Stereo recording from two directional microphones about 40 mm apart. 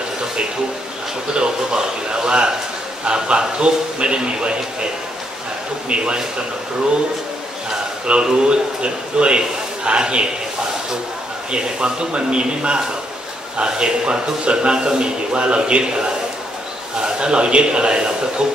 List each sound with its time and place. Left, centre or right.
1.3 s a man's voice: right
5.9 s a man's voice: right
8.1 s a man's voice: right
11.5 s a man's voice: right